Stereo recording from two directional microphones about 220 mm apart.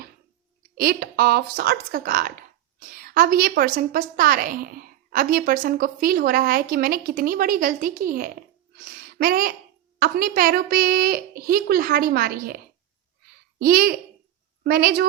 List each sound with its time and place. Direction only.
0.8 s a woman's voice: 45° right (ahead or behind)
13.6 s a woman's voice: 40° right (ahead or behind)